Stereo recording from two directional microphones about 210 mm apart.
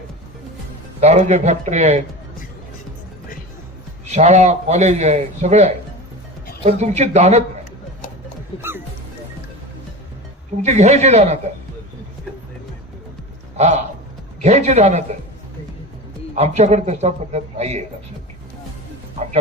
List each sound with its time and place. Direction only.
1.0 s a man's voice: 30° right (ahead or behind)
4.1 s a man's voice: 30° right (ahead or behind)
10.6 s a man's voice: 35° right (ahead or behind)
13.6 s a man's voice: 35° right (ahead or behind)
16.3 s a man's voice: 30° right (ahead or behind)